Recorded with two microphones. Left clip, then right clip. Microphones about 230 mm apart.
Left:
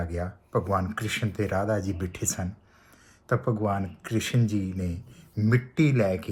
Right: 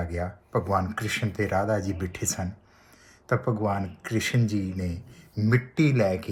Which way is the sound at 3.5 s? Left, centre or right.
Centre.